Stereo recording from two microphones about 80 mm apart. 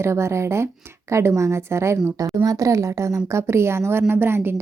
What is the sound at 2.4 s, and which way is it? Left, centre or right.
A woman's voice, right.